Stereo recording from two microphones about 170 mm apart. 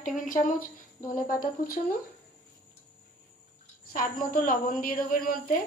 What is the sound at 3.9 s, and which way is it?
A woman's voice, 55° left (ahead or behind).